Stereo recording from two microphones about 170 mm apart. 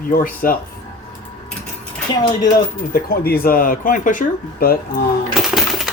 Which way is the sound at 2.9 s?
65° left (ahead or behind).